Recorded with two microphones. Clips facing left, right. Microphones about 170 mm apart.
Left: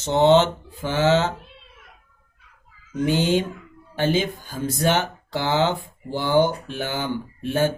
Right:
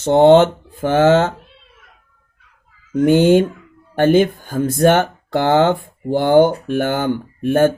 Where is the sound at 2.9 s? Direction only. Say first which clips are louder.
Right 9 dB; 55° right (ahead or behind).